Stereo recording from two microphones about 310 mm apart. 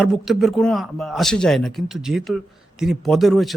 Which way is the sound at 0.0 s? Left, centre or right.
Centre.